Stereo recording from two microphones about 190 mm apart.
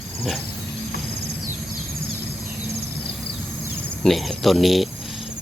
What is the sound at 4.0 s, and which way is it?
Speech, centre (ahead or behind).